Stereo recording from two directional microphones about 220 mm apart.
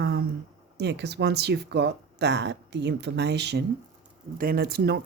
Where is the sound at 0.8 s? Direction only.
50° right (ahead or behind).